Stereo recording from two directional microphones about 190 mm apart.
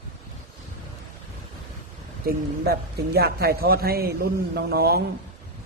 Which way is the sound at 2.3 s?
55° right (ahead or behind).